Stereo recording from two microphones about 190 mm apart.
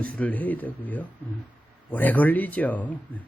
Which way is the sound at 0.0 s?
5° left (ahead or behind).